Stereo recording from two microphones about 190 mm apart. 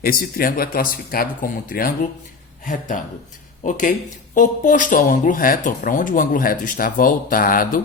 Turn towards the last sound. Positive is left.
turn(degrees=50)  # may be behind; listen again after turning